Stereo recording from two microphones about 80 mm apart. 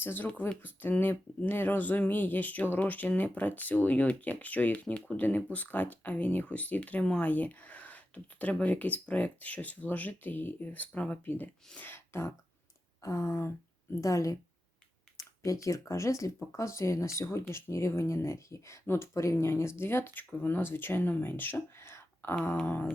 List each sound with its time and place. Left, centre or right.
0.0 s speech: left
15.4 s speech: left